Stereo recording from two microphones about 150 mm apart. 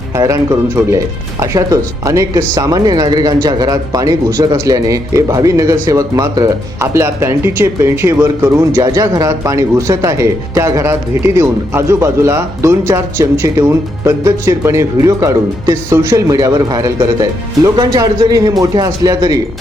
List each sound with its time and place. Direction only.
0.9 s speech: 20° right (ahead or behind)